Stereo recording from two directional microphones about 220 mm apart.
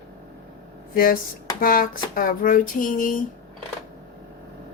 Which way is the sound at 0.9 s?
40° left (ahead or behind).